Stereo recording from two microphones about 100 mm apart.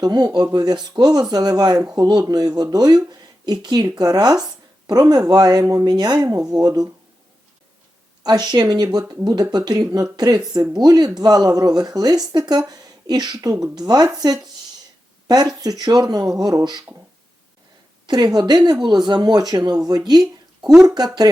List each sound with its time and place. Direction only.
0.0 s speech: 40° right (ahead or behind)
8.2 s speech: 40° right (ahead or behind)
15.6 s speech: 40° right (ahead or behind)
18.0 s speech: 45° right (ahead or behind)
20.1 s a sound: 45° right (ahead or behind)
20.8 s speech: 40° right (ahead or behind)